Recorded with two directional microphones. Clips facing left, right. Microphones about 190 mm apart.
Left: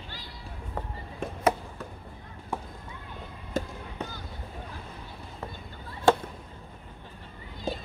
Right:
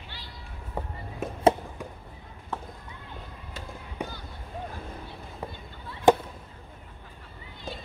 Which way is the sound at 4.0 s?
10° right (ahead or behind).